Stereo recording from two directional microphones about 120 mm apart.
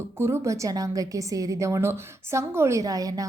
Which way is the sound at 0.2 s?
20° right (ahead or behind).